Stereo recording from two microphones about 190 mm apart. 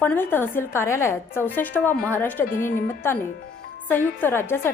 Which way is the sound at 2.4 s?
45° left (ahead or behind).